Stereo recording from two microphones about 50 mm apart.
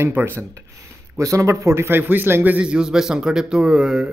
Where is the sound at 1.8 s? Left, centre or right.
Right.